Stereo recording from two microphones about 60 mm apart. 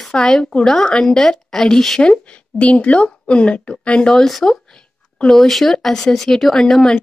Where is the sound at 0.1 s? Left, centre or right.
Centre.